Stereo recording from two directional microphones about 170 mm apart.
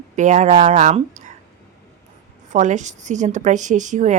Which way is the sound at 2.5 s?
45° right (ahead or behind).